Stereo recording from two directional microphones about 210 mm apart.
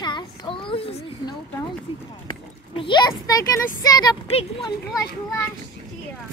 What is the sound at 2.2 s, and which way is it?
Speech, 25° left (ahead or behind).